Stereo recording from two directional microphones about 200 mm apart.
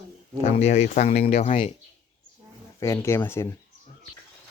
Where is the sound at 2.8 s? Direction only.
15° left (ahead or behind).